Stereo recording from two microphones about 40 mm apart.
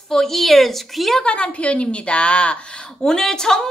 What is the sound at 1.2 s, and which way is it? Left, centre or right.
A woman's voice, left.